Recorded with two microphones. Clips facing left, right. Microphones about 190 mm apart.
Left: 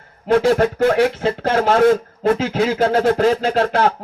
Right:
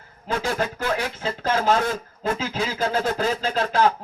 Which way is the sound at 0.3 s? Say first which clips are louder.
Left 11 dB; 60° left (ahead or behind).